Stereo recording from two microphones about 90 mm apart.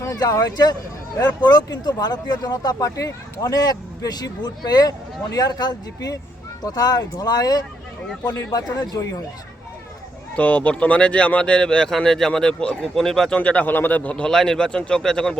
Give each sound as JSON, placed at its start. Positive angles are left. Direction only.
{"t": 0.0, "sound": "speech", "side_deg": 40}
{"t": 10.3, "sound": "a man's voice", "side_deg": 15}